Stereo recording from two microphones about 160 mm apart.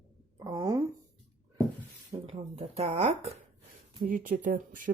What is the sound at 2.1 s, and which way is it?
Speech, 40° right (ahead or behind).